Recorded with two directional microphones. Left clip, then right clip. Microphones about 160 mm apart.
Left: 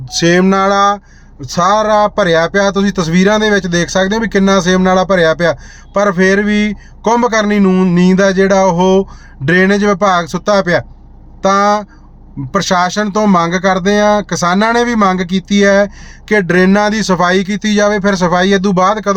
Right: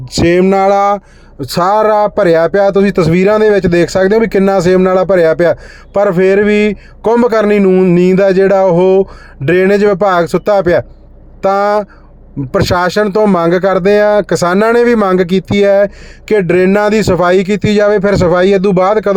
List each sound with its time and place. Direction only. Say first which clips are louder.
0.1 s speech: right 2 dB; 30° right (ahead or behind)